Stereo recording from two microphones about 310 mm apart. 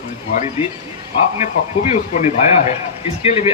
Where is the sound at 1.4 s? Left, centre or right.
Left.